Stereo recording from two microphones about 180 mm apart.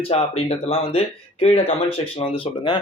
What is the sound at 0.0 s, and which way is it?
Speech, 35° left (ahead or behind).